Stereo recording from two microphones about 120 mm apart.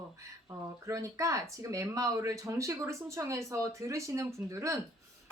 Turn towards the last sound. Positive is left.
turn(degrees=-25)  # may be behind; listen again after turning